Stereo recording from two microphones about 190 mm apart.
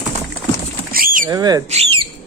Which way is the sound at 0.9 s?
45° right (ahead or behind).